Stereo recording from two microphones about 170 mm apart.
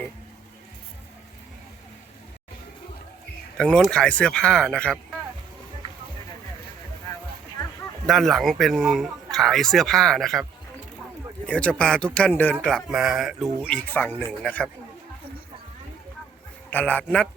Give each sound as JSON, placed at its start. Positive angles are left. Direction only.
{"t": 3.6, "sound": "speech", "side_deg": 5}
{"t": 8.0, "sound": "speech", "side_deg": 0}
{"t": 11.4, "sound": "speech", "side_deg": 5}
{"t": 16.6, "sound": "speech", "side_deg": 10}